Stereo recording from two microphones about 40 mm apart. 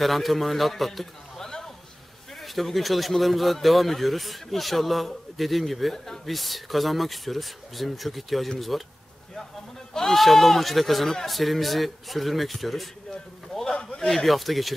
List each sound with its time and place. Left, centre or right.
0.0 s speech: centre
1.4 s a sound: centre
2.4 s speech: centre
9.9 s speech: centre
13.5 s a sound: centre
13.9 s speech: centre